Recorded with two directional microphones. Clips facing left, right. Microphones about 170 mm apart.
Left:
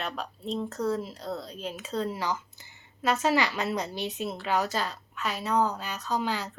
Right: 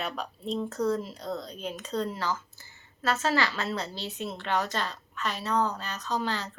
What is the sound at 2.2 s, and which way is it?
A woman's voice, 15° left (ahead or behind).